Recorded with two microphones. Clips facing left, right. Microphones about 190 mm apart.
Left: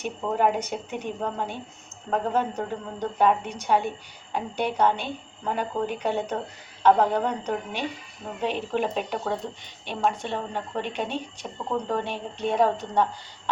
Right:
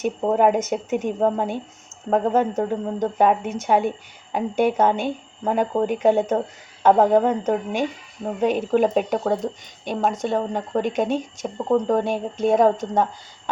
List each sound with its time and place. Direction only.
0.0 s speech: 50° right (ahead or behind)